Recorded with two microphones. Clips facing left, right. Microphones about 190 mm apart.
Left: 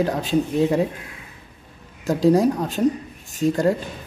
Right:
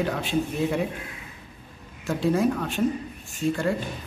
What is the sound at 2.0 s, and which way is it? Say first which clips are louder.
Speech: left 6 dB; 40° left (ahead or behind).